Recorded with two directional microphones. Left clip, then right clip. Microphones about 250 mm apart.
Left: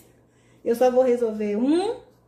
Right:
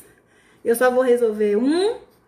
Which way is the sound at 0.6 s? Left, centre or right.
Centre.